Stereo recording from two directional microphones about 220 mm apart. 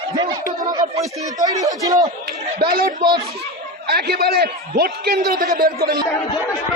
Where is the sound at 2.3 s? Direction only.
45° right (ahead or behind).